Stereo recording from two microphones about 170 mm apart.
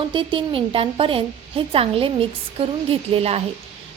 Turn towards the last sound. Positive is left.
turn(degrees=-35)  # may be behind; listen again after turning